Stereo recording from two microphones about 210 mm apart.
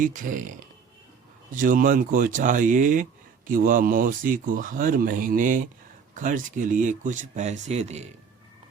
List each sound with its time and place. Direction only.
0.0 s speech: 40° right (ahead or behind)